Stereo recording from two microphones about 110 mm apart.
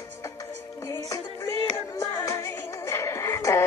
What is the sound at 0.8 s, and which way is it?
Music, 30° left (ahead or behind).